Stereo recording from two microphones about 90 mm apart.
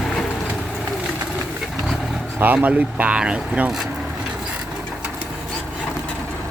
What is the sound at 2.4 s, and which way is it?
Speech, 20° right (ahead or behind).